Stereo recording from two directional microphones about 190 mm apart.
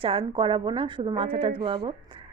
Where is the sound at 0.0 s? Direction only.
30° right (ahead or behind).